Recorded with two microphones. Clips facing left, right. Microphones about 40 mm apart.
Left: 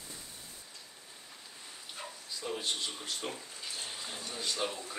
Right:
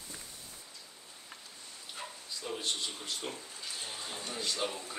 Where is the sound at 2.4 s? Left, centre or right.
Centre.